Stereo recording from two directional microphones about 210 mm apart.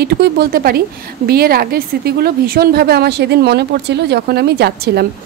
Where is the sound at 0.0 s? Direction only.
50° right (ahead or behind).